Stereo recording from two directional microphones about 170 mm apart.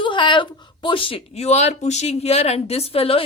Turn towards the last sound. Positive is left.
turn(degrees=35)  # may be behind; listen again after turning